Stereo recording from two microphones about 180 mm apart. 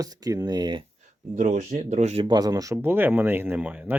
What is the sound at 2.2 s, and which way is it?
Speech, 20° right (ahead or behind).